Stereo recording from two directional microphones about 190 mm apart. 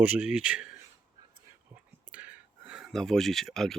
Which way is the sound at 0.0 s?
5° right (ahead or behind).